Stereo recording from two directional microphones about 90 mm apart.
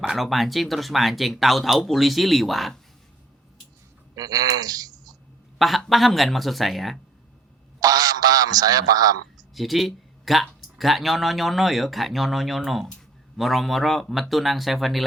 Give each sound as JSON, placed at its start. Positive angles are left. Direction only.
{"t": 0.0, "sound": "speech", "side_deg": 0}
{"t": 4.1, "sound": "speech", "side_deg": -45}
{"t": 5.5, "sound": "speech", "side_deg": 0}
{"t": 7.8, "sound": "a sound", "side_deg": -45}
{"t": 9.6, "sound": "speech", "side_deg": 0}